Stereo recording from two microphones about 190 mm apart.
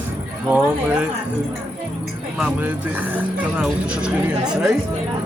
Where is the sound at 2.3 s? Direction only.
5° right (ahead or behind).